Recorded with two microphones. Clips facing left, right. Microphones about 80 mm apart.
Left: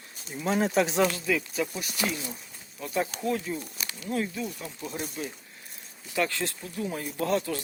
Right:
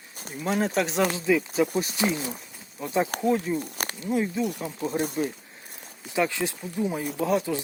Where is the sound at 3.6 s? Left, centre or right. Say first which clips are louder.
Right 6 dB; right.